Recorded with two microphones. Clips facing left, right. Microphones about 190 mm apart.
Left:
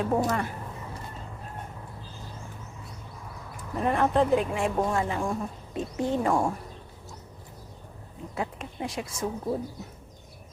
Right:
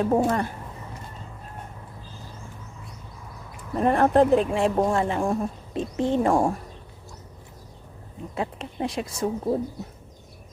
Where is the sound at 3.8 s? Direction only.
45° right (ahead or behind).